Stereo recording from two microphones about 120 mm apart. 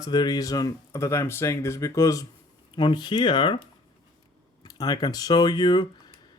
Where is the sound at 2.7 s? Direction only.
40° left (ahead or behind).